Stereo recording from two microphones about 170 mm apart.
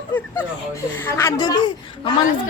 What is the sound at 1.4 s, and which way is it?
Speech, 25° left (ahead or behind).